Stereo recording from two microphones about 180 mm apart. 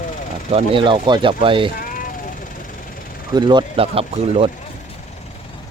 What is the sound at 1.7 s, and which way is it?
Vehicle, 50° left (ahead or behind).